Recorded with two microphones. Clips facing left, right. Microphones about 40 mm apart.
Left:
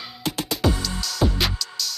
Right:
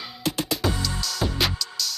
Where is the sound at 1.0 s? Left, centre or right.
Centre.